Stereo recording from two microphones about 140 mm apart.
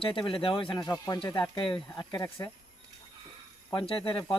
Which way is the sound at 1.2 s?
35° left (ahead or behind).